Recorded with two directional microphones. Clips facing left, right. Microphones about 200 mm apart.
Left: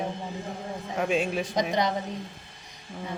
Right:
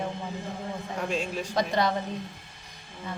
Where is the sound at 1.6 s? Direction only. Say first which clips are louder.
Right 1 dB; 15° left (ahead or behind).